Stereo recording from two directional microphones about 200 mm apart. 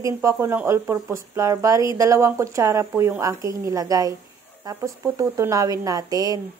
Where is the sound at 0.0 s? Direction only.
15° right (ahead or behind).